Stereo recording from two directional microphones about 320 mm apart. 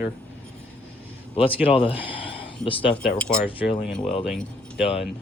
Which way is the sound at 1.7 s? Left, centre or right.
Centre.